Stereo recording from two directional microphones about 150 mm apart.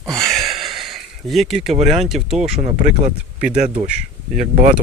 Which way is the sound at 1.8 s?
45° right (ahead or behind).